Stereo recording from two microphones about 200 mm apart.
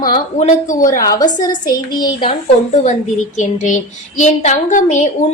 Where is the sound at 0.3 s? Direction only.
40° left (ahead or behind).